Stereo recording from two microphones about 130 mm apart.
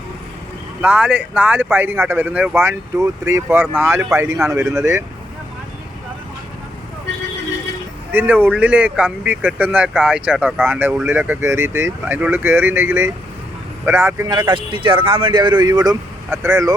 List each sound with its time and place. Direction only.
0.8 s speech: 10° right (ahead or behind)
8.1 s speech: 15° right (ahead or behind)
14.3 s speech: 35° right (ahead or behind)